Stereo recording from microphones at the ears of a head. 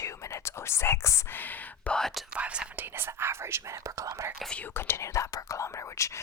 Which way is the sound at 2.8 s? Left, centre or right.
Right.